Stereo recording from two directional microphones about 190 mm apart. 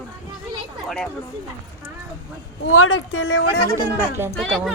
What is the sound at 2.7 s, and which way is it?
Speech, 90° left.